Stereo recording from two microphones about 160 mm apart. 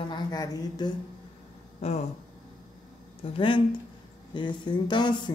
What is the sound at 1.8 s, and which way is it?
Speech, 40° left (ahead or behind).